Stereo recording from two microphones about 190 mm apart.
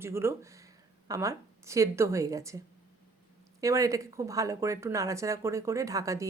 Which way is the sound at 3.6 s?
15° right (ahead or behind).